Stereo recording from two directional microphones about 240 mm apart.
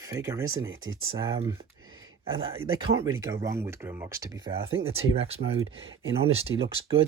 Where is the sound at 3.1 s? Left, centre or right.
Centre.